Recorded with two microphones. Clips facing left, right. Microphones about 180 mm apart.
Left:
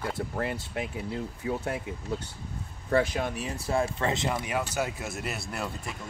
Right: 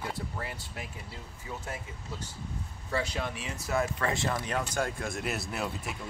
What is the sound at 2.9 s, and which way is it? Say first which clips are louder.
Speech: left 7 dB; 50° left (ahead or behind).